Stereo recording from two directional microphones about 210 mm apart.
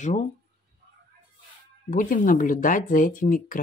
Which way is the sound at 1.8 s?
40° left (ahead or behind).